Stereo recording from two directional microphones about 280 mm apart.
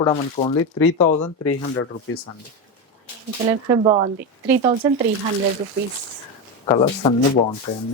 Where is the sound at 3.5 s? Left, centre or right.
Centre.